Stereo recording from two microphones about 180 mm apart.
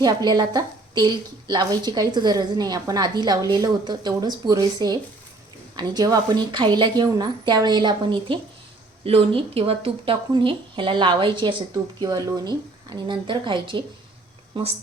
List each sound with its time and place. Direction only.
0.0 s a woman's voice: 20° right (ahead or behind)